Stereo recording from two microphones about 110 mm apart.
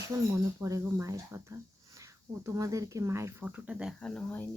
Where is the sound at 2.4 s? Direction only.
30° right (ahead or behind).